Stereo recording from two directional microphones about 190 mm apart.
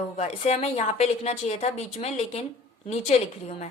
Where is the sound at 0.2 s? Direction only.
35° left (ahead or behind).